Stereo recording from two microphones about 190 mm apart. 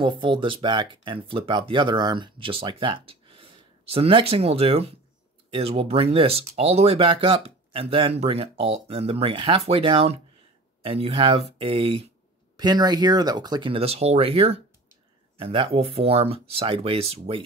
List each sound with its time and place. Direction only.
0.0 s speech: 25° right (ahead or behind)